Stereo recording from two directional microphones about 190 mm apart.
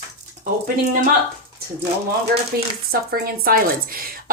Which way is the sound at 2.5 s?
55° right (ahead or behind).